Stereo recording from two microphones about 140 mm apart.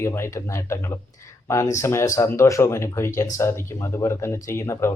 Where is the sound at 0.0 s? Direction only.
20° left (ahead or behind).